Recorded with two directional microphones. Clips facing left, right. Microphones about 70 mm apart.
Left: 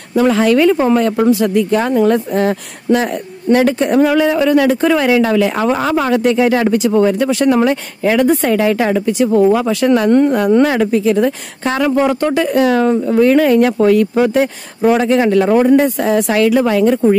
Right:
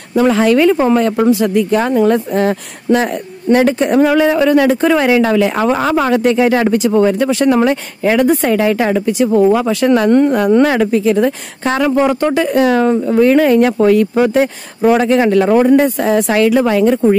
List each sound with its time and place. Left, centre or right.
0.1 s speech: right
3.5 s speech: right
4.0 s speech: right
4.6 s speech: right
8.1 s speech: centre; by 10.0 s right
10.0 s speech: right
11.1 s speech: right
11.8 s speech: right
12.6 s speech: right
14.9 s speech: right
15.5 s speech: right
16.0 s speech: right